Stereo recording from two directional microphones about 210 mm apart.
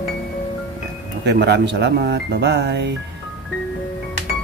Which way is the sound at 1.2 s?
55° right (ahead or behind).